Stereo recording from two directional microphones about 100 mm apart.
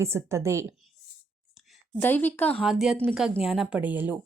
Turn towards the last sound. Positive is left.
turn(degrees=-15)  # may be behind; listen again after turning